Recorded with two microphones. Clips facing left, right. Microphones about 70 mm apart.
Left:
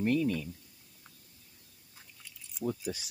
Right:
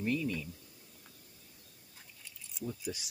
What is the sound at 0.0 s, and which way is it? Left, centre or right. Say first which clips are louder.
Speech: left 5 dB; left.